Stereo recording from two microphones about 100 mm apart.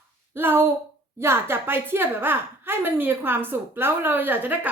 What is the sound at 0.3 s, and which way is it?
A woman's voice, 20° right (ahead or behind).